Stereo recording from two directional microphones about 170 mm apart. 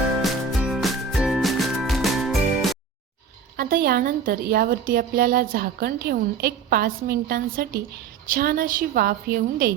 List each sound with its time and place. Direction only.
0.2 s music: centre (ahead or behind)
3.6 s a woman's voice: 60° right (ahead or behind)